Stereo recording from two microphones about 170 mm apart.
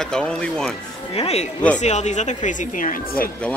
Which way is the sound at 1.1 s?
40° left (ahead or behind).